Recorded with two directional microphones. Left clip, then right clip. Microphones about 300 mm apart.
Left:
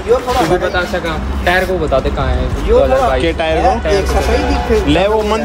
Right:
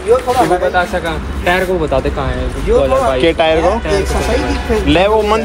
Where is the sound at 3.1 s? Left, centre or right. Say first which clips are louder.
Right 3 dB; centre.